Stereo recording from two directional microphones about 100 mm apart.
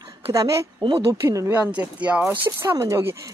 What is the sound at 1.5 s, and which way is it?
A woman's voice, 15° right (ahead or behind).